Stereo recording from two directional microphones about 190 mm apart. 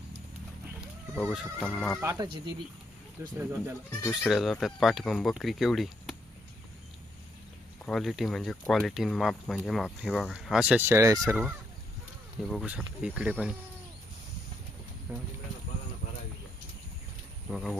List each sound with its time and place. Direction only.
0.8 s speech: centre (ahead or behind)
2.0 s speech: 15° right (ahead or behind)
4.1 s speech: centre (ahead or behind)
7.9 s speech: centre (ahead or behind)
12.4 s speech: 5° left (ahead or behind)
15.1 s speech: 10° right (ahead or behind)
17.5 s speech: centre (ahead or behind)